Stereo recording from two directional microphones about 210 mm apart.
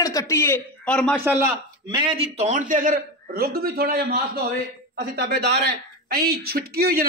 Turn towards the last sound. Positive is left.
turn(degrees=-45)  # may be behind; listen again after turning